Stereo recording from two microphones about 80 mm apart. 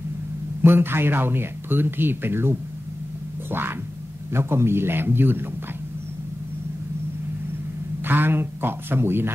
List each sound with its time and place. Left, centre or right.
0.6 s speech: right
3.4 s music: right
4.3 s speech: right
8.0 s speech: right